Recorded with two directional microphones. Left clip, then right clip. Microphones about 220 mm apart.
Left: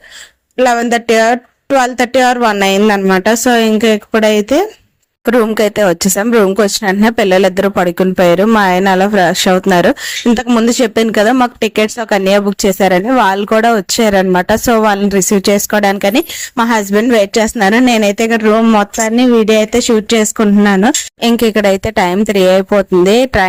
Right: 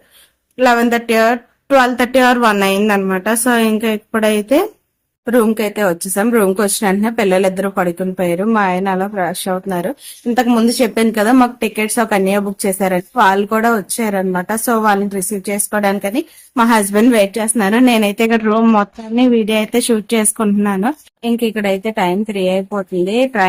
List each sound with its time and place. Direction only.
0.5 s speech: 25° left (ahead or behind)
5.2 s speech: 45° left (ahead or behind); by 20.9 s 25° left (ahead or behind)
21.2 s speech: 45° left (ahead or behind)